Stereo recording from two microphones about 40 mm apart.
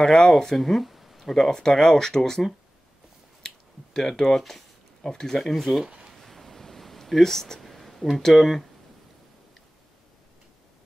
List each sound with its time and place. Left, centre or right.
0.0 s speech: centre
1.5 s speech: centre
3.4 s finger snapping: centre
5.0 s speech: centre
5.4 s speech: centre
5.9 s a sound: right
6.1 s a sound: centre
8.2 s speech: centre